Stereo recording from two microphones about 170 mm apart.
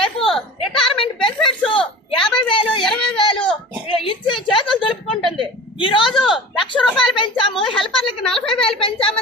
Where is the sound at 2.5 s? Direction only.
30° left (ahead or behind).